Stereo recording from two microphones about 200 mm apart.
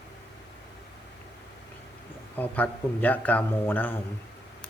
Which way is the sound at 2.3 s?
10° left (ahead or behind).